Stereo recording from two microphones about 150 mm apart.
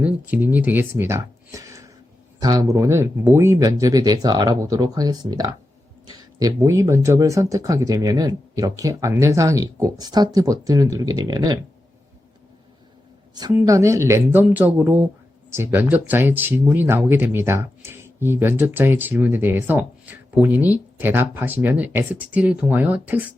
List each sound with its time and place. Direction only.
0.0 s speech: 10° right (ahead or behind); by 11.6 s 25° right (ahead or behind)
13.5 s speech: 20° right (ahead or behind)